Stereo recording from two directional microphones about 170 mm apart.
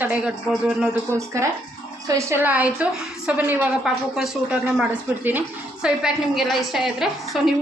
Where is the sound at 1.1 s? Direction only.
15° right (ahead or behind).